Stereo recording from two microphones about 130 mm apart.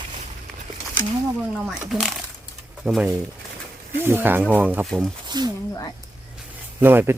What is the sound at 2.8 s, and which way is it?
Speech, 5° right (ahead or behind).